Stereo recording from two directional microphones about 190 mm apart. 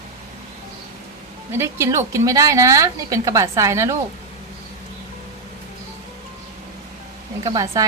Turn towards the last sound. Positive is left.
turn(degrees=-20)  # may be behind; listen again after turning